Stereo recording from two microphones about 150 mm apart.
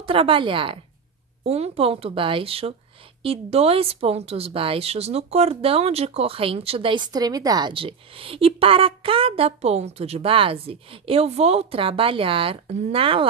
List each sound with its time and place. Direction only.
0.0 s speech: 40° right (ahead or behind)